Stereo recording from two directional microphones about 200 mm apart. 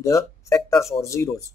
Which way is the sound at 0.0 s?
15° left (ahead or behind).